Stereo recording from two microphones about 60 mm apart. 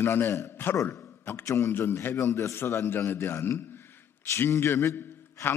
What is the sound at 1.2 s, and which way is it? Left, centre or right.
Speech, left.